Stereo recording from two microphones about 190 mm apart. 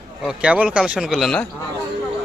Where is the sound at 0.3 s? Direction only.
5° right (ahead or behind).